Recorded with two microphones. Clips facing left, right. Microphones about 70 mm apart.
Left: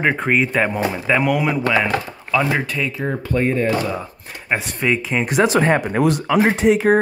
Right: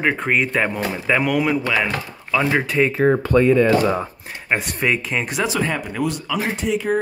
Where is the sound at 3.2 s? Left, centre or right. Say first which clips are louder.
Right 1 dB; right.